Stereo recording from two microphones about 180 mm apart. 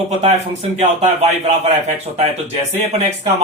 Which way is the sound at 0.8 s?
35° right (ahead or behind).